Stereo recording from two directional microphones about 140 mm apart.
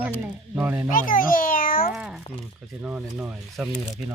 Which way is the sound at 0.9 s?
80° left.